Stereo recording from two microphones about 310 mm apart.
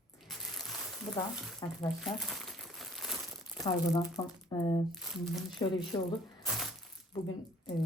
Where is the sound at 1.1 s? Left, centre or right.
Centre.